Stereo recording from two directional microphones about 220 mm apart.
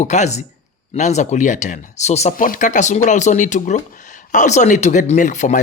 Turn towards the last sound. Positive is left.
turn(degrees=35)  # may be behind; listen again after turning